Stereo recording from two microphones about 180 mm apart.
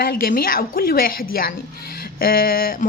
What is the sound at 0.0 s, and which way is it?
A woman's voice, 55° left (ahead or behind).